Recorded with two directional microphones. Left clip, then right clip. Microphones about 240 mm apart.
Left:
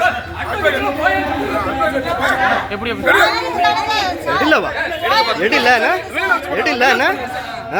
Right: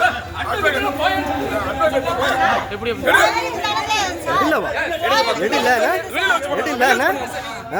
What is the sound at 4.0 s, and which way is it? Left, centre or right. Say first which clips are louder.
Chatter: left 2 dB; right.